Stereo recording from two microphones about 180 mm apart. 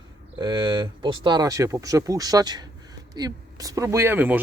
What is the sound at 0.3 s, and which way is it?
Speech, 25° right (ahead or behind).